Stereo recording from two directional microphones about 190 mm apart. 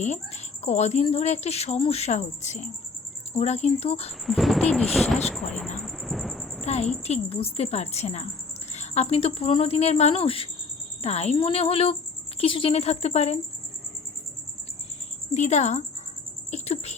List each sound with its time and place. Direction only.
0.0 s speech: 35° left (ahead or behind)
4.3 s speech: centre (ahead or behind)
5.8 s thunder: centre (ahead or behind)
7.0 s speech: 35° left (ahead or behind)
15.3 s speech: 35° left (ahead or behind)
16.5 s a sound: 35° left (ahead or behind)